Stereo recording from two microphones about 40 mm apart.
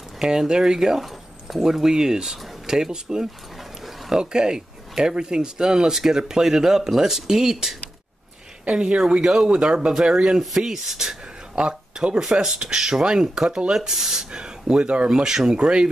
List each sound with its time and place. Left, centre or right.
0.2 s speech: centre
8.6 s speech: right
10.6 s speech: centre
11.5 s speech: right
12.2 s speech: centre
14.3 s speech: right
15.0 s speech: centre
15.5 s speech: right